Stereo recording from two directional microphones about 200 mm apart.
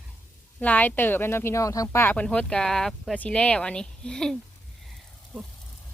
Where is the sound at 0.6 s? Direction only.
10° left (ahead or behind).